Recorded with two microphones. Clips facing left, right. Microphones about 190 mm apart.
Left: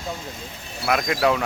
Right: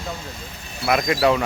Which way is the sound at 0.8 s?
Centre (ahead or behind).